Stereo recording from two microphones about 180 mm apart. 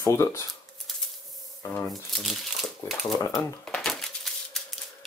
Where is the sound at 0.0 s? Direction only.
15° left (ahead or behind).